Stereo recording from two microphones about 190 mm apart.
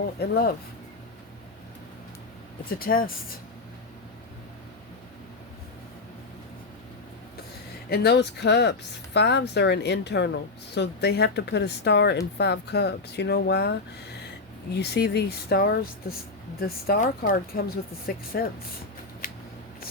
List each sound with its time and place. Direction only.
0.2 s speech: 55° left (ahead or behind)
2.7 s speech: 50° left (ahead or behind)
7.9 s speech: 60° left (ahead or behind)